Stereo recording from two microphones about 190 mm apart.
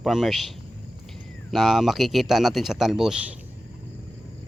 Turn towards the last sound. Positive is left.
turn(degrees=0)  # may be behind; listen again after turning